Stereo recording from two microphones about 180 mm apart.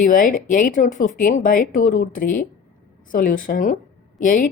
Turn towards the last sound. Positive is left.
turn(degrees=50)  # may be behind; listen again after turning